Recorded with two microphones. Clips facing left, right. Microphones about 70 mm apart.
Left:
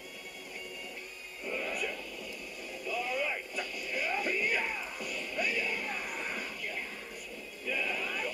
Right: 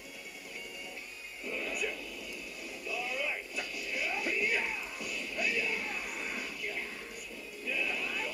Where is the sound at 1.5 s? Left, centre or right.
Left.